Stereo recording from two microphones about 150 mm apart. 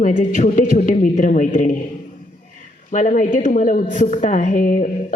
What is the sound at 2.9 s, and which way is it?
A woman's voice, 55° left (ahead or behind).